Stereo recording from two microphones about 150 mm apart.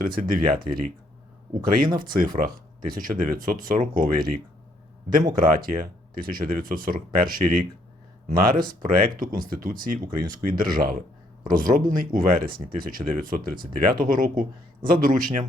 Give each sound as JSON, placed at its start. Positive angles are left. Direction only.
{"t": 0.2, "sound": "speech", "side_deg": -65}
{"t": 2.0, "sound": "speech", "side_deg": -70}
{"t": 5.4, "sound": "a man's voice", "side_deg": -70}